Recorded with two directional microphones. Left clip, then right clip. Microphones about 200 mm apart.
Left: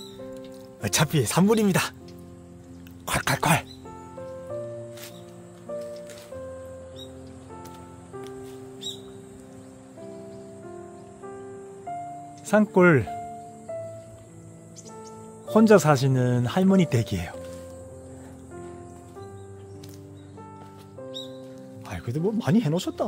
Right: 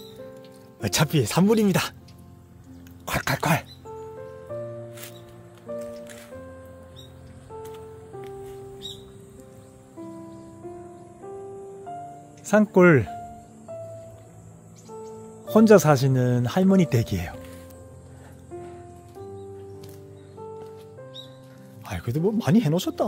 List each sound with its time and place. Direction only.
0.7 s speech: 10° right (ahead or behind)
3.1 s speech: 5° right (ahead or behind)
12.4 s speech: 10° right (ahead or behind)
15.4 s speech: 10° right (ahead or behind)
21.8 s speech: 25° right (ahead or behind)